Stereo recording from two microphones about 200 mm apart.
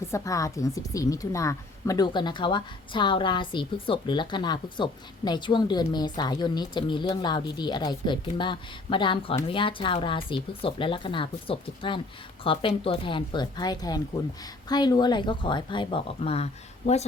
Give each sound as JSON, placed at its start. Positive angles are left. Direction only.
{"t": 0.1, "sound": "a woman's voice", "side_deg": 15}